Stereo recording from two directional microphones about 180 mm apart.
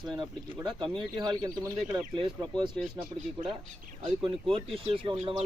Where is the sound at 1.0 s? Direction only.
20° right (ahead or behind).